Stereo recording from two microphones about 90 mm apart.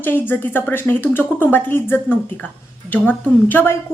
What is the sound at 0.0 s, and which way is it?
A woman's voice, 20° left (ahead or behind).